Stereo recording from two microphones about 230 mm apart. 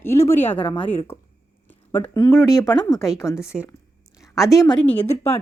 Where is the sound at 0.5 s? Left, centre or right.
Left.